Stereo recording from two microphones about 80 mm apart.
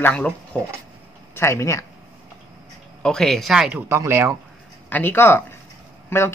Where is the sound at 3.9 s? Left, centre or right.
Right.